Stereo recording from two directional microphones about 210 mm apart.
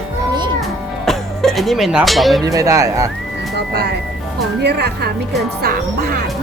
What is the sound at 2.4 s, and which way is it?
Speech, 15° right (ahead or behind).